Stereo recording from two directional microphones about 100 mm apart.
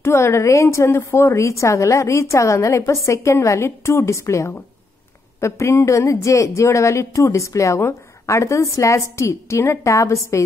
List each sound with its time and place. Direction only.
0.0 s a woman's voice: 25° left (ahead or behind)